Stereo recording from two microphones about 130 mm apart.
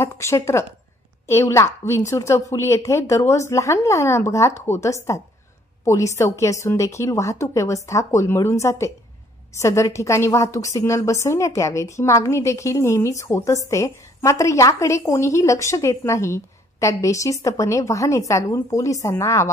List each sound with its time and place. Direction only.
0.0 s a woman's voice: 20° left (ahead or behind)